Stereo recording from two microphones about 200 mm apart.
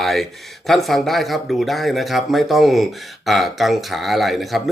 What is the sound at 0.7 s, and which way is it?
Speech, centre (ahead or behind).